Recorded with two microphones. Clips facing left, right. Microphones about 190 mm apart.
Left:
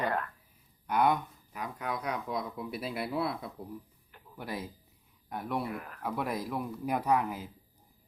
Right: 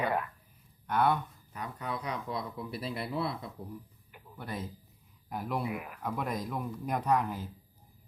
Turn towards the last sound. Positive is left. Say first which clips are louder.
# even
turn(degrees=10)  # may be behind; listen again after turning